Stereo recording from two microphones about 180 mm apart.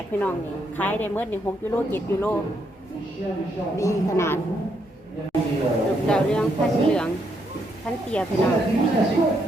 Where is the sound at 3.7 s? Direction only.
15° left (ahead or behind).